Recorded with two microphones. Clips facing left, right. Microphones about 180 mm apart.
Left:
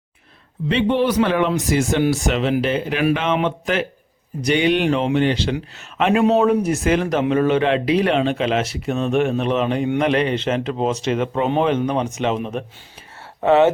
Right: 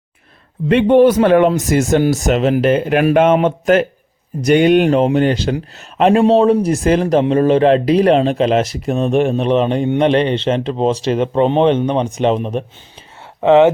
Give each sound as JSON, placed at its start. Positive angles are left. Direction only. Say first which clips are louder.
{"t": 0.7, "sound": "speech", "louder": "right 8 dB", "side_deg": -50}
{"t": 13.4, "sound": "speech", "louder": "right 5 dB", "side_deg": -20}